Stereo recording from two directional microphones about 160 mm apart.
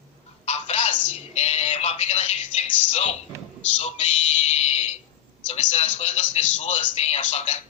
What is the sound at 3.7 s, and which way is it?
Speech, 40° left (ahead or behind).